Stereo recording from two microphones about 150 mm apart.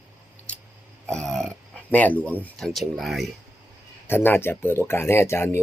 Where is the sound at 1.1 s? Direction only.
5° left (ahead or behind).